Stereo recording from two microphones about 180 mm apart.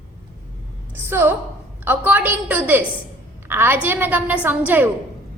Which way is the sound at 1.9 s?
10° right (ahead or behind).